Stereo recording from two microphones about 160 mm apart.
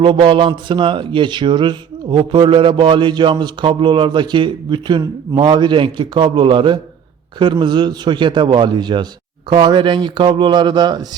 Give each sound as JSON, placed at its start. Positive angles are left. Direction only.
{"t": 0.0, "sound": "a man's voice", "side_deg": -30}